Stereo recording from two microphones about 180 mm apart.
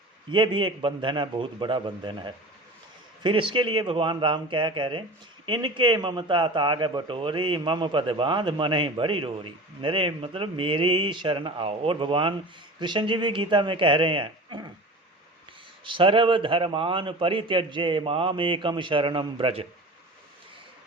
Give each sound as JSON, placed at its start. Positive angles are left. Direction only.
{"t": 0.3, "sound": "a man's voice", "side_deg": -25}
{"t": 15.8, "sound": "a man's voice", "side_deg": -30}